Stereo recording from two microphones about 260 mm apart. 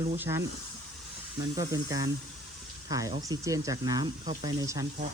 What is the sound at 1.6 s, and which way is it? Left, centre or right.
Speech, centre.